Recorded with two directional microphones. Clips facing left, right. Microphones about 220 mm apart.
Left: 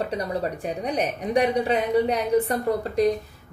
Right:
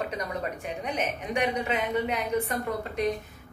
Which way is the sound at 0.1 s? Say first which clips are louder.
Left 5 dB; 35° left (ahead or behind).